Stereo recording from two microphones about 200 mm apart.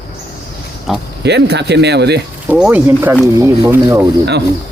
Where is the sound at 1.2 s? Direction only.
60° right (ahead or behind).